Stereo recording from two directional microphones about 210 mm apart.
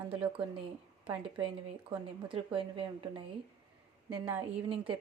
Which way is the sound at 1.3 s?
25° right (ahead or behind).